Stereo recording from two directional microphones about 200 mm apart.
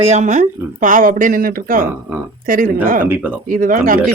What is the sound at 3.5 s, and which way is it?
Speech, 45° right (ahead or behind).